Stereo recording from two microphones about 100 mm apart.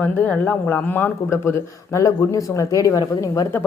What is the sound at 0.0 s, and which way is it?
Speech, 20° left (ahead or behind).